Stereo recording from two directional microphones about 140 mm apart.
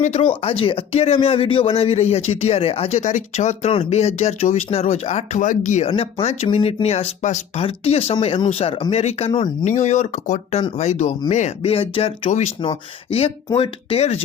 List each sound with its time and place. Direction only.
0.0 s speech: 55° left (ahead or behind)
0.3 s speech: 40° left (ahead or behind)
5.5 s speech: 60° left (ahead or behind)
5.8 s speech: 40° left (ahead or behind)
9.7 s speech: 55° left (ahead or behind)